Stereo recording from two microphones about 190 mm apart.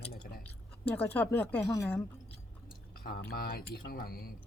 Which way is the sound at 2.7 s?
50° left (ahead or behind).